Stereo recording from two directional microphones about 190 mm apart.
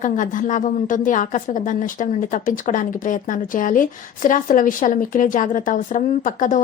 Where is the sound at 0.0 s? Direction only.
40° left (ahead or behind).